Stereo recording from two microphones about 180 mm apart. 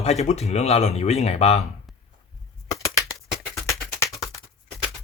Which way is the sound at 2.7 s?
20° left (ahead or behind).